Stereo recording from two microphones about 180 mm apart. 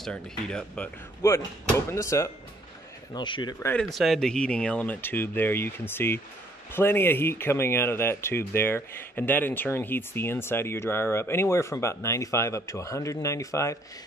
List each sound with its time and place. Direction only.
0.0 s speech: 5° left (ahead or behind); by 3.5 s 25° left (ahead or behind)
3.5 s speech: 10° left (ahead or behind)